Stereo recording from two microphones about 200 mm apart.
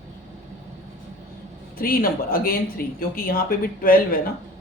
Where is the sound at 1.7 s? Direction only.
45° left (ahead or behind).